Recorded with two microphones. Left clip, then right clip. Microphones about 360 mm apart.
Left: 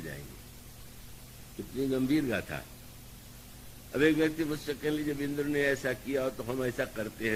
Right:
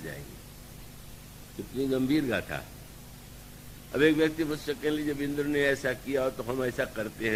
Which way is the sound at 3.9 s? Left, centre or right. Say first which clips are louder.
Right 3 dB; right.